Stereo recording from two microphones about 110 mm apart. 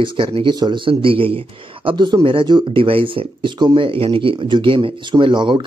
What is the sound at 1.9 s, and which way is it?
Speech, 45° right (ahead or behind).